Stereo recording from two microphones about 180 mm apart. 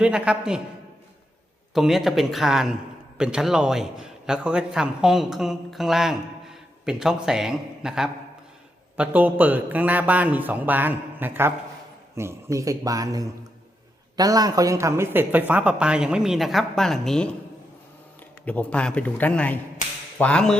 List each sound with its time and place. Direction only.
0.0 s a man's voice: 5° right (ahead or behind)
1.7 s a man's voice: centre (ahead or behind)
18.4 s a man's voice: 10° left (ahead or behind)